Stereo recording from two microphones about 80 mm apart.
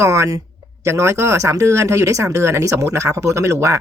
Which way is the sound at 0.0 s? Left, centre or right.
Right.